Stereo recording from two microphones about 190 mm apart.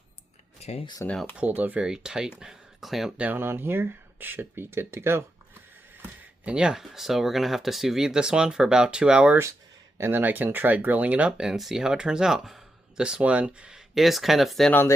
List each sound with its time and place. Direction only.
0.6 s speech: 30° left (ahead or behind)
1.0 s speech: 5° left (ahead or behind)
1.4 s speech: 10° right (ahead or behind); by 14.9 s 10° left (ahead or behind)